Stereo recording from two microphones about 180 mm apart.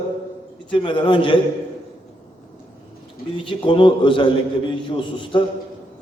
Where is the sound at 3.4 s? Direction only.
25° left (ahead or behind).